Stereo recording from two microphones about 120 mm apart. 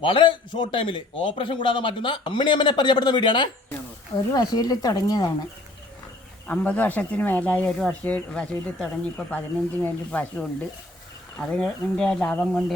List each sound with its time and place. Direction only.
0.0 s a man's voice: 45° left (ahead or behind)
6.5 s speech: 15° left (ahead or behind)